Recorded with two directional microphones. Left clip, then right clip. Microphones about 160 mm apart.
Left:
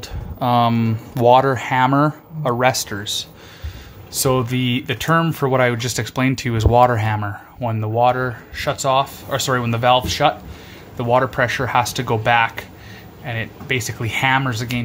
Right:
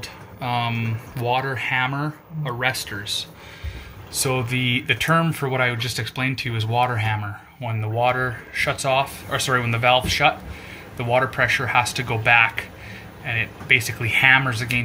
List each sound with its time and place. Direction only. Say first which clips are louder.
0.4 s speech: left 8 dB; 40° left (ahead or behind); by 14.8 s 25° left (ahead or behind)